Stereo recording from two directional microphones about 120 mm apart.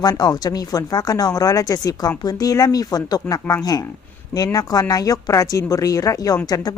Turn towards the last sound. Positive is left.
turn(degrees=30)  # may be behind; listen again after turning